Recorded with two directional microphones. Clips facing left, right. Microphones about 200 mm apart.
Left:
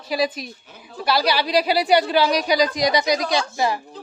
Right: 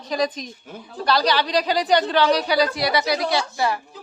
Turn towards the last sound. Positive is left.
turn(degrees=20)  # may be behind; listen again after turning